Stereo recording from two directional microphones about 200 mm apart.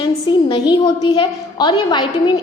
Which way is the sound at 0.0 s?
20° left (ahead or behind).